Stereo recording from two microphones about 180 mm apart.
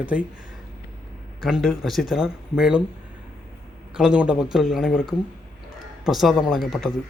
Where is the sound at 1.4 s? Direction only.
Centre (ahead or behind).